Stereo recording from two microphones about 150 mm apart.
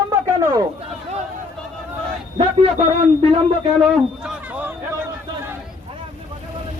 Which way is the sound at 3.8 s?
Centre (ahead or behind).